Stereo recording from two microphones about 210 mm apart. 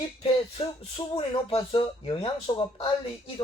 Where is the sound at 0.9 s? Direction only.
25° left (ahead or behind).